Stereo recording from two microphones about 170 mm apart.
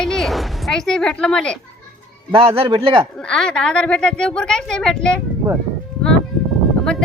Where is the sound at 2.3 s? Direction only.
35° right (ahead or behind).